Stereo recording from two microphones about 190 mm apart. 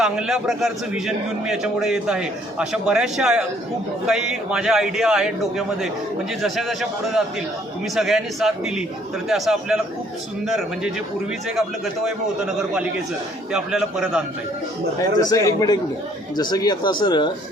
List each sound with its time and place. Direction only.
0.0 s a man's voice: centre (ahead or behind)
12.5 s a man's voice: 5° right (ahead or behind)
15.2 s speech: 20° left (ahead or behind)